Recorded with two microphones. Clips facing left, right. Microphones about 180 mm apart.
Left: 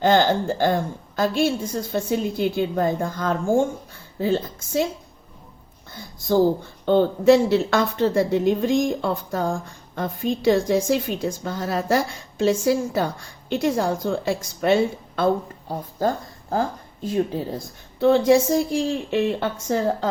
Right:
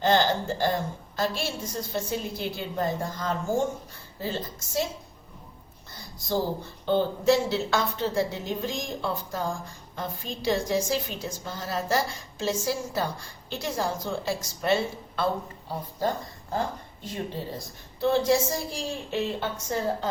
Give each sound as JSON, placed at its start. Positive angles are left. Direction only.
{"t": 0.0, "sound": "a woman's voice", "side_deg": 50}
{"t": 5.9, "sound": "a woman's voice", "side_deg": 55}
{"t": 18.0, "sound": "a woman's voice", "side_deg": 55}